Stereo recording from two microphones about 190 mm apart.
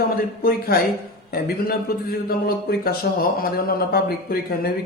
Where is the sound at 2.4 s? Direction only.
50° left (ahead or behind).